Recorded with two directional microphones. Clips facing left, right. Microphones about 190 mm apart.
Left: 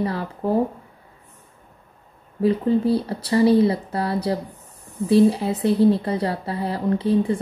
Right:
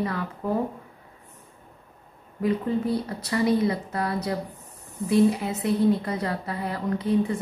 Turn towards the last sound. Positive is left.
turn(degrees=30)  # may be behind; listen again after turning